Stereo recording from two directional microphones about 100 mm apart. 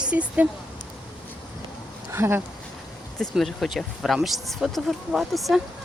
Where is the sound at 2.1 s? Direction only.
25° right (ahead or behind).